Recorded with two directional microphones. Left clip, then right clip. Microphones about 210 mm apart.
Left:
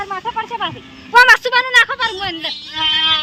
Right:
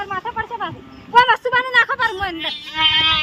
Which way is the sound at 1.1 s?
20° left (ahead or behind).